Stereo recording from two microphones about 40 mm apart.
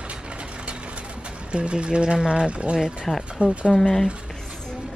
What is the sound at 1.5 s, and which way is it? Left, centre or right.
Speech, right.